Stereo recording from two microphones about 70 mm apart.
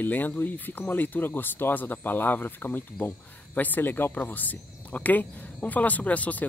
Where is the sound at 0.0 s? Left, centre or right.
Left.